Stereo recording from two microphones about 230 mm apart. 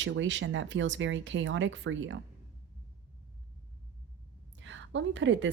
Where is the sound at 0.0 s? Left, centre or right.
Right.